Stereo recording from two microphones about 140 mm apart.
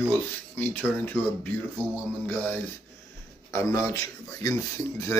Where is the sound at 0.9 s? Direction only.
15° left (ahead or behind).